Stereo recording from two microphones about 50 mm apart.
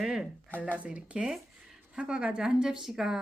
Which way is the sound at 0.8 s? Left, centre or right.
Centre.